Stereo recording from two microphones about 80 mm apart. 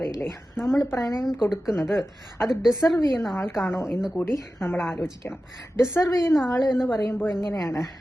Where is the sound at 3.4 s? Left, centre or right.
Left.